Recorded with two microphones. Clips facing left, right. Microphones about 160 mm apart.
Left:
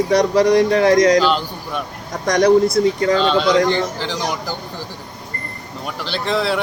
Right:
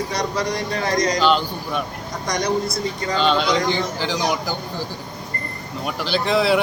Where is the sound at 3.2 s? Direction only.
Centre (ahead or behind).